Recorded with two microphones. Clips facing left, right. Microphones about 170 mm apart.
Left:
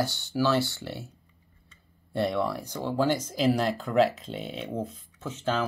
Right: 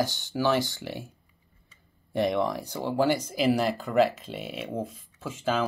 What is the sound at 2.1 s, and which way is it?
Speech, 15° right (ahead or behind).